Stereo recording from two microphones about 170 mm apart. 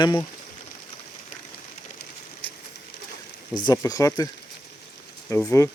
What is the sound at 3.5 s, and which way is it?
Speech, 25° left (ahead or behind).